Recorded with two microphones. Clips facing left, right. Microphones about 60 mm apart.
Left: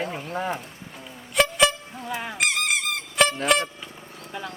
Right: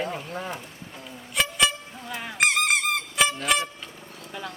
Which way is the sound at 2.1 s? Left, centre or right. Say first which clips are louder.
Left 4 dB; centre.